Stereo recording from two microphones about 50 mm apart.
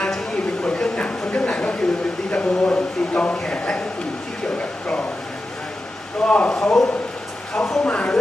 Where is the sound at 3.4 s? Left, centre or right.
Centre.